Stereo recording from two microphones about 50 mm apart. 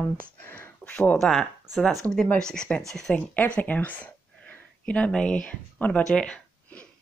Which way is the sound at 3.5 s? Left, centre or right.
Left.